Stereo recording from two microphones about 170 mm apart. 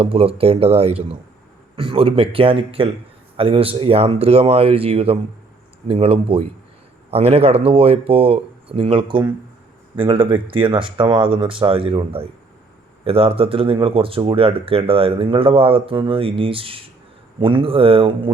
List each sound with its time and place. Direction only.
0.0 s speech: 35° right (ahead or behind)